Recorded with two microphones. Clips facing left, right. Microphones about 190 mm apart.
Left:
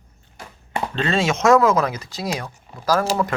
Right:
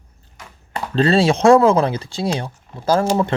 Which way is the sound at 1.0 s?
35° right (ahead or behind).